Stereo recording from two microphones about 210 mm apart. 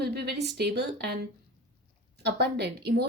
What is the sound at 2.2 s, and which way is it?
Speech, 50° right (ahead or behind).